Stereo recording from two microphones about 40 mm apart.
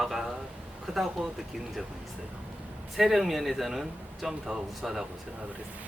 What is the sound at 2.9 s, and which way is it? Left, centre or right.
Speech, centre.